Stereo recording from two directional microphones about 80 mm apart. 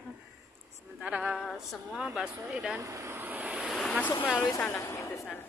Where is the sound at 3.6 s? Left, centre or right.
Centre.